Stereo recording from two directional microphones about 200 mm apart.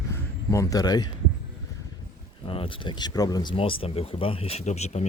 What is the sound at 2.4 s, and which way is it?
Speech, 25° left (ahead or behind).